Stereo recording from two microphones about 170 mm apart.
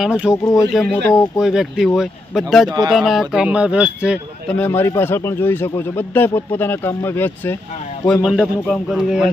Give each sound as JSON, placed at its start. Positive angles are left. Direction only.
{"t": 0.0, "sound": "a man's voice", "side_deg": -5}
{"t": 2.6, "sound": "speech", "side_deg": -25}
{"t": 2.9, "sound": "a man's voice", "side_deg": 0}
{"t": 4.4, "sound": "a man's voice", "side_deg": 10}
{"t": 8.0, "sound": "a man's voice", "side_deg": 0}